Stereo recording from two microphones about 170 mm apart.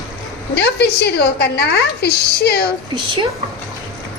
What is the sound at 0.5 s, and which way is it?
Speech, 85° left.